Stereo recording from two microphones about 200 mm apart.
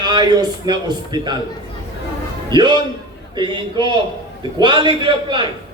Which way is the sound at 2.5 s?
20° right (ahead or behind).